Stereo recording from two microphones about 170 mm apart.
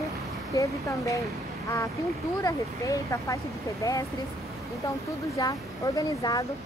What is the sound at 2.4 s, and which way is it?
Speech, 20° left (ahead or behind).